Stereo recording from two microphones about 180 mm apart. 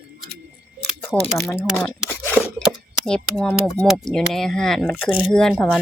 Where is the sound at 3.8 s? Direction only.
Centre (ahead or behind).